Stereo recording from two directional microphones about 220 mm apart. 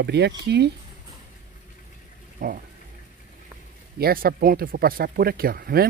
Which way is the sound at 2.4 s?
40° right (ahead or behind).